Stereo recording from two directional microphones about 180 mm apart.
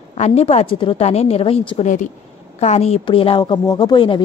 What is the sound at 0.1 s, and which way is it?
A woman's voice, 35° left (ahead or behind).